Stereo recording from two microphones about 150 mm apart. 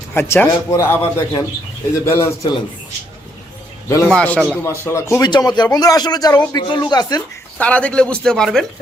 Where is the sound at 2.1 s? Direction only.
15° left (ahead or behind).